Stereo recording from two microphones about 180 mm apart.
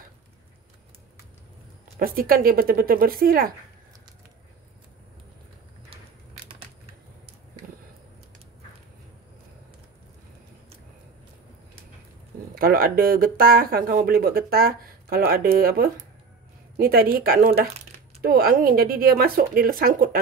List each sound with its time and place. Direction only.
2.0 s speech: 55° right (ahead or behind)
12.5 s speech: 55° right (ahead or behind)